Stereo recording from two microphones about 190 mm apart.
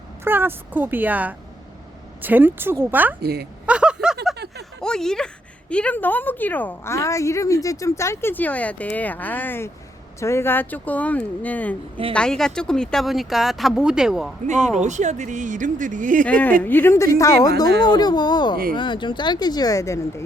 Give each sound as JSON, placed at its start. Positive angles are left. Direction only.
{"t": 0.3, "sound": "speech", "side_deg": -10}
{"t": 3.2, "sound": "a woman's voice", "side_deg": -55}
{"t": 3.7, "sound": "a sound", "side_deg": -5}
{"t": 4.8, "sound": "a woman's voice", "side_deg": 5}
{"t": 14.8, "sound": "speech", "side_deg": -40}
{"t": 16.2, "sound": "a woman's voice", "side_deg": 5}